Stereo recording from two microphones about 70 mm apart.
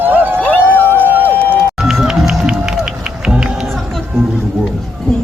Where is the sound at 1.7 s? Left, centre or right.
Centre.